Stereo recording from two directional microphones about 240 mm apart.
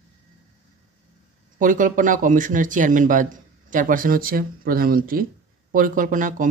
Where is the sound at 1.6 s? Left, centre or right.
Right.